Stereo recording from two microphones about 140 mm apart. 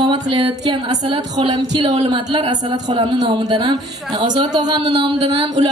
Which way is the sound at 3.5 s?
30° right (ahead or behind).